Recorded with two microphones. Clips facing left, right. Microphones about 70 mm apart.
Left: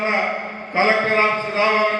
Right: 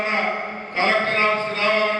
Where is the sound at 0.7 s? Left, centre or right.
Centre.